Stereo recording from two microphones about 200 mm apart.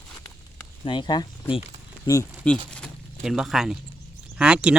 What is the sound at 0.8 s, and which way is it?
Speech, 25° left (ahead or behind).